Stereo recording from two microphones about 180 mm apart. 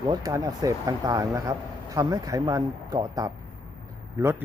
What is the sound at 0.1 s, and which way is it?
Speech, 20° right (ahead or behind).